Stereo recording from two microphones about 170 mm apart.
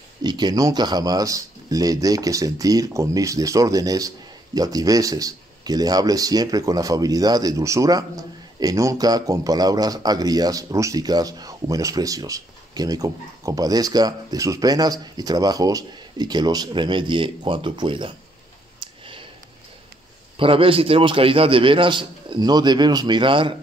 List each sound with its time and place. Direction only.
0.2 s speech: 25° right (ahead or behind)
18.8 s a sound: 30° right (ahead or behind)
20.3 s speech: 30° right (ahead or behind)